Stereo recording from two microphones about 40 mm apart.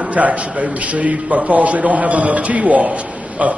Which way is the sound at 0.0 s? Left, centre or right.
Right.